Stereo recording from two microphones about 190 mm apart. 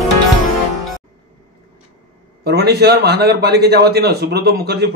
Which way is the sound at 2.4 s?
60° right (ahead or behind).